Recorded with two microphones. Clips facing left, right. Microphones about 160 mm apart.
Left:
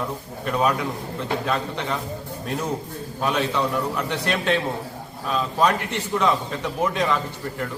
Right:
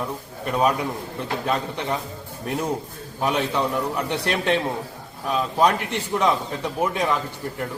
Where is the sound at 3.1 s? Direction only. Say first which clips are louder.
Even; 15° right (ahead or behind).